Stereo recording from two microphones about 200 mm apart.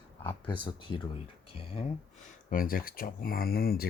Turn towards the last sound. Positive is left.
turn(degrees=50)  # may be behind; listen again after turning